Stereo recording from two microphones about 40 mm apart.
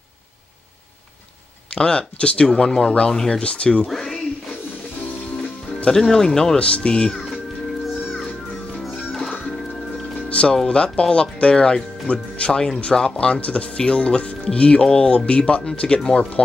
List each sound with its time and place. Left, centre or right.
1.7 s speech: left
3.3 s speech: left
3.8 s speech: centre
5.9 s speech: centre
7.8 s music: centre
10.1 s music: left
10.7 s speech: left